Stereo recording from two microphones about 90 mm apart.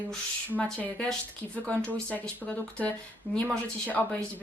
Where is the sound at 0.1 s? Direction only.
15° left (ahead or behind).